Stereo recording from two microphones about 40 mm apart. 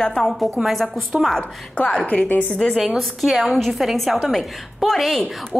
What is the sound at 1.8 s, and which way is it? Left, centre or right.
Speech, left.